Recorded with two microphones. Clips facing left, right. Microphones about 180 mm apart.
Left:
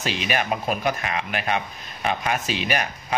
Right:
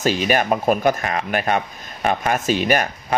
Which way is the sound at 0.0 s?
45° right (ahead or behind).